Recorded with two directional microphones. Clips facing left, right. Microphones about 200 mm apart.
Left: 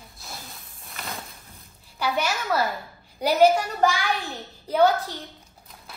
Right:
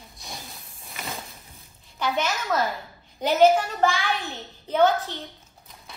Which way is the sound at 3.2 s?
10° left (ahead or behind).